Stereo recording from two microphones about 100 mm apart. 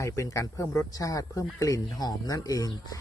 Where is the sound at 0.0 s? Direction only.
30° left (ahead or behind).